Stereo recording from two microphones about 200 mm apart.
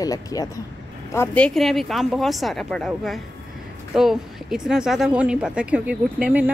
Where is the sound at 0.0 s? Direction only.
15° left (ahead or behind).